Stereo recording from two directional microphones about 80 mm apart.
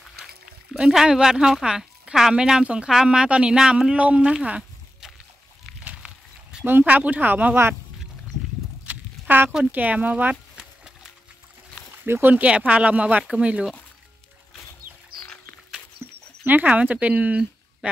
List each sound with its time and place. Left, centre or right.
0.7 s speech: centre
5.9 s a sound: centre
6.8 s speech: centre
8.8 s a sound: right
9.7 s speech: centre
12.1 s speech: right
16.0 s speech: right